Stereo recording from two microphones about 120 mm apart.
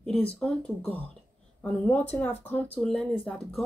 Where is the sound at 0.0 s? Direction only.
5° left (ahead or behind).